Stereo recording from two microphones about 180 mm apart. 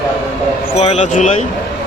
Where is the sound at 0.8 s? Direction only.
35° left (ahead or behind).